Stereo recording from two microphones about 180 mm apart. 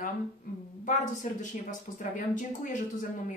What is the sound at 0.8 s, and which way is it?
A woman's voice, 45° left (ahead or behind).